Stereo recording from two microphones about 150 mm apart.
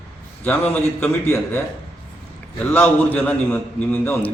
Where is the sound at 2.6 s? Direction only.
15° left (ahead or behind).